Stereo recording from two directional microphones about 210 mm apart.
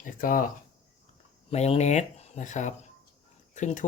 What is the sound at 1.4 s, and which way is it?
Speech, 30° left (ahead or behind).